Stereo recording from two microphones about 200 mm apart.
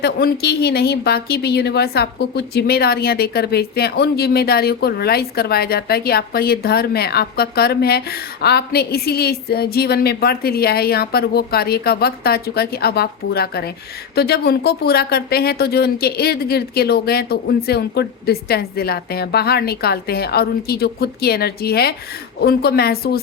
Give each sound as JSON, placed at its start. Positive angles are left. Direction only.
{"t": 0.0, "sound": "a woman's voice", "side_deg": 50}